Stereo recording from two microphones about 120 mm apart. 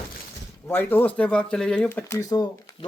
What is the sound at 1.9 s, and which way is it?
Speech, 25° left (ahead or behind).